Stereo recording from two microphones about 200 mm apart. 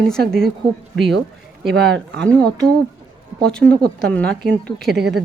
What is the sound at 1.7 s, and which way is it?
Speech, 55° right (ahead or behind).